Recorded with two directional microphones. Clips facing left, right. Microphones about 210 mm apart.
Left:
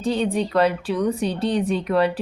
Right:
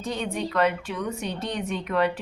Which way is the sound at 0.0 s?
30° left (ahead or behind).